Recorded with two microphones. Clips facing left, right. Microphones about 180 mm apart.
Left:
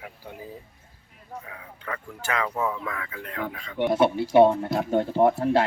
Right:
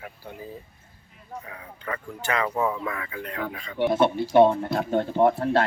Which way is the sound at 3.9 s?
10° left (ahead or behind).